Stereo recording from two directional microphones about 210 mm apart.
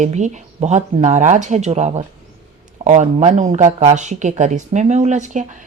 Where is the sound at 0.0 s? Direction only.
35° right (ahead or behind).